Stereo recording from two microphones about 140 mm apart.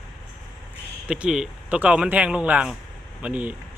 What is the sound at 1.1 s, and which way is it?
Speech, 5° right (ahead or behind).